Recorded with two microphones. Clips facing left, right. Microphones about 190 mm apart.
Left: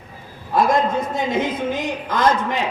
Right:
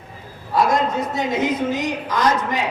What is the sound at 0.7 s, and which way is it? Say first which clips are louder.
A woman's voice: left 1 dB; 55° left (ahead or behind).